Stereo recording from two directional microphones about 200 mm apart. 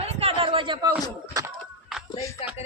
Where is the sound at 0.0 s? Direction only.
30° right (ahead or behind).